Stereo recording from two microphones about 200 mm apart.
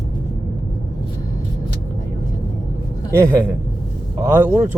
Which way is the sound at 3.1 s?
15° right (ahead or behind).